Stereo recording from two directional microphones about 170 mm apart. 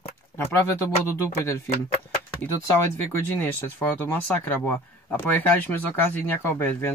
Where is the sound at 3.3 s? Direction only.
10° left (ahead or behind).